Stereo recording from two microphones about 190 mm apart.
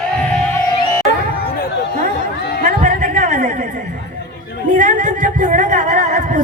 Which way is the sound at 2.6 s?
40° right (ahead or behind).